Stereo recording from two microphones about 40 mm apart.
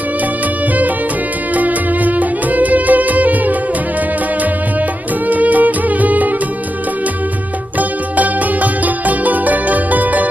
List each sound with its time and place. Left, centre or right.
1.5 s music: right
5.3 s music: right
8.2 s music: right